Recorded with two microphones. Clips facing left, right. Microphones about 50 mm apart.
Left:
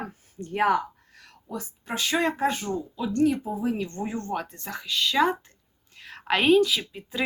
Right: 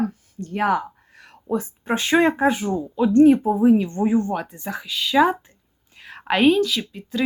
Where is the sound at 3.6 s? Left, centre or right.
Centre.